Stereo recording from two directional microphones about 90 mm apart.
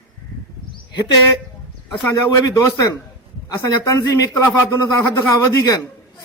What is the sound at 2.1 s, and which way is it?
Speech, 40° left (ahead or behind).